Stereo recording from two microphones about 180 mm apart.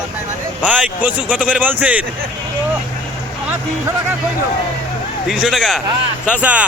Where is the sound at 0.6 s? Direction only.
10° right (ahead or behind).